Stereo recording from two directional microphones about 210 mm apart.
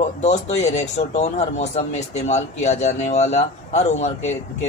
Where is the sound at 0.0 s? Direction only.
30° left (ahead or behind).